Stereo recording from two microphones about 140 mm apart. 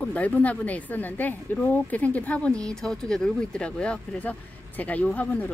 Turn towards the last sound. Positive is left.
turn(degrees=10)  # may be behind; listen again after turning